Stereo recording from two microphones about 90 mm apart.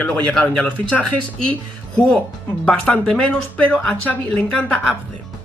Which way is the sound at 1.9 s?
10° left (ahead or behind).